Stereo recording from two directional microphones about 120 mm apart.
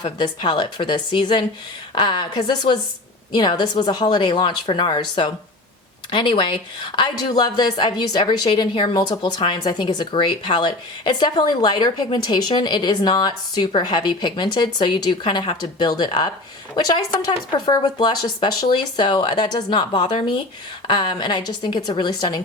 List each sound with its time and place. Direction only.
0.0 s speech: 40° left (ahead or behind)